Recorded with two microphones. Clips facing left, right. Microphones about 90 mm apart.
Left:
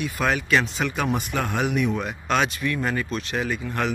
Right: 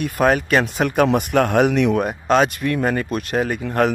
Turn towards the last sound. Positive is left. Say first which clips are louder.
# right 7 dB
turn(degrees=-50)  # may be behind; listen again after turning